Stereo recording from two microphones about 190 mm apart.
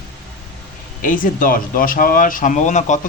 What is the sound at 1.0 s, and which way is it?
Speech, 45° left (ahead or behind).